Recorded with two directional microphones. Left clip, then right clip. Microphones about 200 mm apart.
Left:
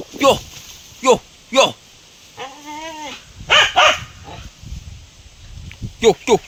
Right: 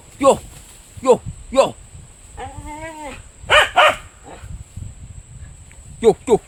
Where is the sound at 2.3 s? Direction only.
20° right (ahead or behind).